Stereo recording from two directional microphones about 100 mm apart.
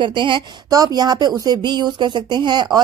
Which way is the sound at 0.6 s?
40° right (ahead or behind).